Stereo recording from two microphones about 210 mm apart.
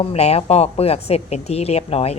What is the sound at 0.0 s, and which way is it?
Speech, 30° left (ahead or behind).